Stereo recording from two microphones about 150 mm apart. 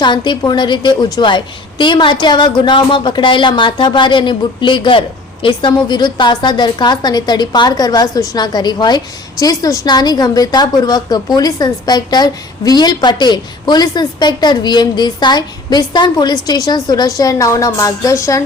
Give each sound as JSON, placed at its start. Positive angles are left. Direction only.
{"t": 0.0, "sound": "a woman's voice", "side_deg": 30}